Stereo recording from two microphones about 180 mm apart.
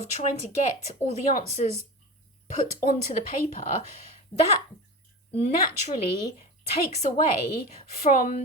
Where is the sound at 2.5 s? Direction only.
40° left (ahead or behind).